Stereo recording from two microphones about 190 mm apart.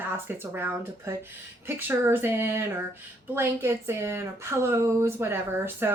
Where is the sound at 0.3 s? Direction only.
10° right (ahead or behind).